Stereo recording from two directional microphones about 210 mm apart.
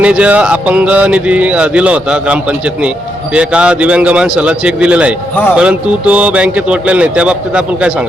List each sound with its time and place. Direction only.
0.0 s speech: 5° right (ahead or behind)